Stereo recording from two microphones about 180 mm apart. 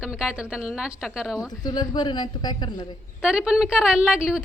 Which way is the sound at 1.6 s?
20° left (ahead or behind).